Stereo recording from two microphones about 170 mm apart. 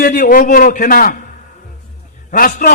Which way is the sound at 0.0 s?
55° left (ahead or behind).